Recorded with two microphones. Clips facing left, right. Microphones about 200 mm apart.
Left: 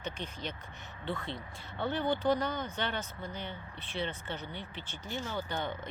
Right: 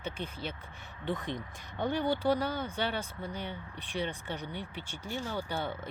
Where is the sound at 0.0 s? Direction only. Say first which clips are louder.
Right 1 dB; 10° right (ahead or behind).